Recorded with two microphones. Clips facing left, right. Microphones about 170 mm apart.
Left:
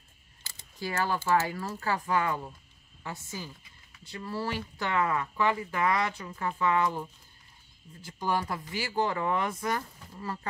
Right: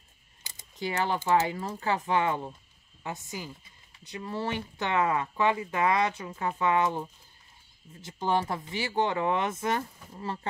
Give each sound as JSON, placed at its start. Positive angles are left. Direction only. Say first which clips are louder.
{"t": 0.4, "sound": "a woman's voice", "louder": "right 3 dB", "side_deg": -20}